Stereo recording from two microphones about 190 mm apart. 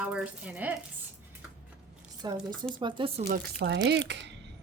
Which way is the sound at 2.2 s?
20° right (ahead or behind).